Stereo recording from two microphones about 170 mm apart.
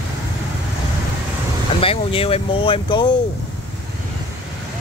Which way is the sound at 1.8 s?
35° left (ahead or behind).